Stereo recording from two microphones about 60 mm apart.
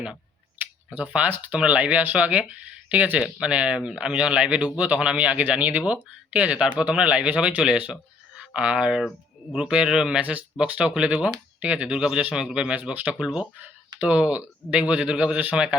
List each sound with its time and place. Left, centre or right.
0.9 s speech: right
10.2 s speech: right
13.2 s speech: centre
14.1 s speech: right